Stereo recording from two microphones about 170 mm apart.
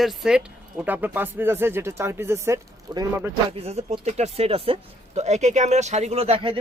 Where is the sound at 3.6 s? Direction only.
40° right (ahead or behind).